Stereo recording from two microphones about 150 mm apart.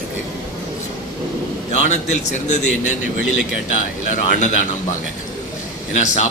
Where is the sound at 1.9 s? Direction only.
50° left (ahead or behind).